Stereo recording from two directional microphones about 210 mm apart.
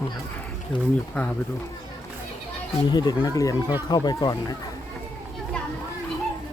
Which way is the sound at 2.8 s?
20° left (ahead or behind).